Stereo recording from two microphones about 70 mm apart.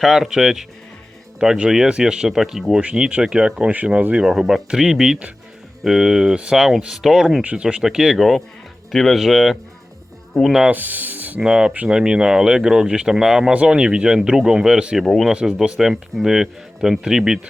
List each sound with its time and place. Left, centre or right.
0.0 s speech: centre
7.4 s speech: centre
10.7 s speech: right
11.3 s speech: centre
15.0 s speech: centre
15.3 s speech: centre